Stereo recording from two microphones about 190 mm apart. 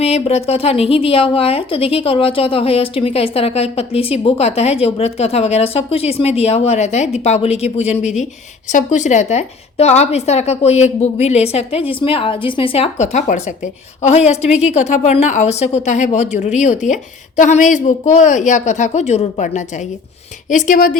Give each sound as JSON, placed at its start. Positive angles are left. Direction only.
{"t": 0.0, "sound": "a woman's voice", "side_deg": 35}